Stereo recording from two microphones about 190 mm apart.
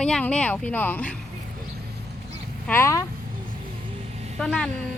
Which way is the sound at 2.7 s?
15° left (ahead or behind).